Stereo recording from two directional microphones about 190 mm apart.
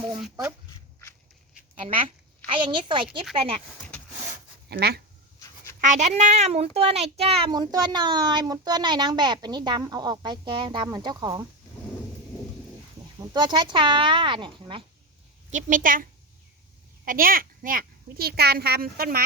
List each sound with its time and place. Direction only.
2.5 s a child's voice: 25° right (ahead or behind)
4.7 s speech: 55° right (ahead or behind)
5.8 s a child's voice: 40° right (ahead or behind); by 11.4 s 20° right (ahead or behind)
13.1 s a child's voice: 20° right (ahead or behind)
15.4 s a child's voice: 40° right (ahead or behind)
17.1 s a child's voice: 50° right (ahead or behind)